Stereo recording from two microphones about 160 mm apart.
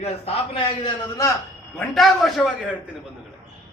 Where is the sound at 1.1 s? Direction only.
20° left (ahead or behind).